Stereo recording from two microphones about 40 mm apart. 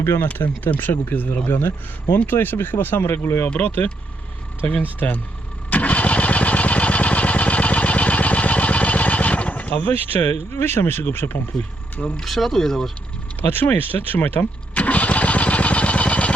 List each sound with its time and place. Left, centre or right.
0.0 s speech: left
0.4 s speech: left
3.6 s speech: left
5.7 s engine starting: left
10.5 s speech: left
12.2 s speech: centre
13.4 s speech: left
14.8 s vehicle: left